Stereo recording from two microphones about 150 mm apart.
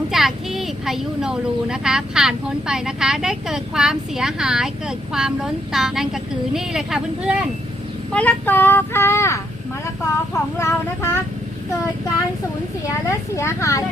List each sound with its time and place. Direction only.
0.1 s speech: centre (ahead or behind)
8.1 s speech: 10° left (ahead or behind)
13.1 s speech: 20° left (ahead or behind)